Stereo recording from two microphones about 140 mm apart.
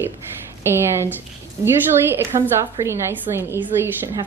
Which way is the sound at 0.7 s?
15° right (ahead or behind).